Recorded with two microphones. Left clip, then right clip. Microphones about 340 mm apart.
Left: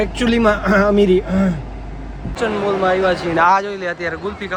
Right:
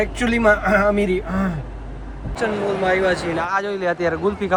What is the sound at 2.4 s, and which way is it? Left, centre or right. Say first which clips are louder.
Speech: left 3 dB; centre.